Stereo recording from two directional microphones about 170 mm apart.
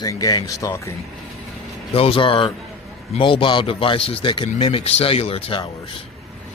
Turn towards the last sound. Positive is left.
turn(degrees=30)  # may be behind; listen again after turning